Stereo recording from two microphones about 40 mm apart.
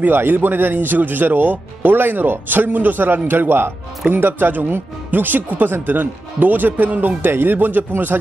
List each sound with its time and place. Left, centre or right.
0.0 s speech: right
7.2 s speech: right